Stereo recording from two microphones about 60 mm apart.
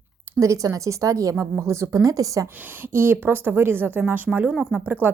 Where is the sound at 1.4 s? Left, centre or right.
Right.